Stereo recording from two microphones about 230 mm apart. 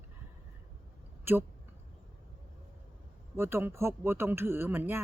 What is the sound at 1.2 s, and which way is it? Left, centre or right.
Speech, centre.